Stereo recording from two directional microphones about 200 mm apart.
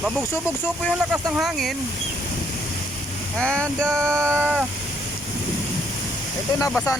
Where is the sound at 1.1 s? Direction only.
5° right (ahead or behind).